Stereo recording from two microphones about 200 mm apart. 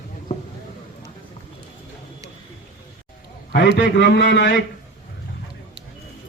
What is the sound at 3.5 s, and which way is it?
A man's voice, 55° left (ahead or behind).